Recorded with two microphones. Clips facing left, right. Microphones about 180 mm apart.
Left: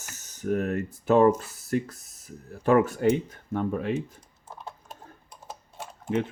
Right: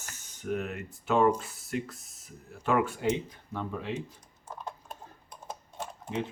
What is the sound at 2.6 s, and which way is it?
Speech, 40° left (ahead or behind).